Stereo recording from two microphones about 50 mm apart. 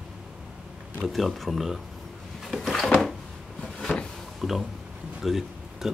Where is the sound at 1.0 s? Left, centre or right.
Centre.